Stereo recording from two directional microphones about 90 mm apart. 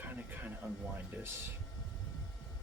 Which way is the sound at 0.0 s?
20° right (ahead or behind).